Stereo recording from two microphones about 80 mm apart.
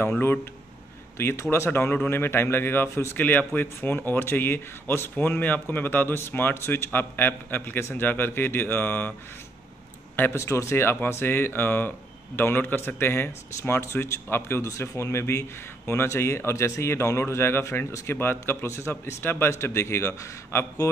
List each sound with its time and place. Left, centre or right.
1.1 s speech: left
10.3 s speech: left